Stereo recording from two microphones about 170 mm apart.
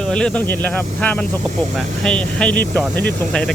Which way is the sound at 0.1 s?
5° left (ahead or behind).